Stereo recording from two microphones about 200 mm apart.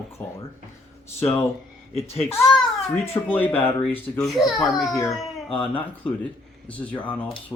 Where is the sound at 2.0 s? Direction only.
30° left (ahead or behind).